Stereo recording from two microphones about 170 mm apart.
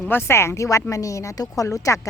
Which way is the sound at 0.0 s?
10° left (ahead or behind).